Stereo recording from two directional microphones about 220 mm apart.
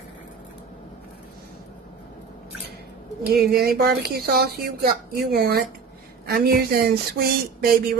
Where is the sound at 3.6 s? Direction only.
45° right (ahead or behind).